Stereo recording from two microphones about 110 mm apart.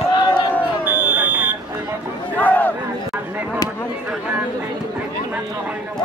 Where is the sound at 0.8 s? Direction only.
15° right (ahead or behind).